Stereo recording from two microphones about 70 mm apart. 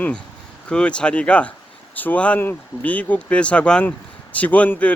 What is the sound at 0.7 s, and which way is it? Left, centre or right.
Speech, centre.